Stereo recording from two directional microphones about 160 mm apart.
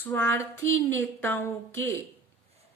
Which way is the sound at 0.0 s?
15° left (ahead or behind).